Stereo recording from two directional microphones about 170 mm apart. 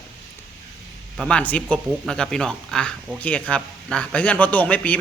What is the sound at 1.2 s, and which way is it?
A man's voice, 5° left (ahead or behind).